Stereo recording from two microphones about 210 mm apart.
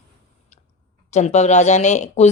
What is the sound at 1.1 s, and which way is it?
Speech, 35° left (ahead or behind).